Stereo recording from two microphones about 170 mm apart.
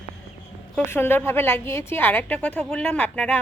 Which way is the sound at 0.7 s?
10° left (ahead or behind).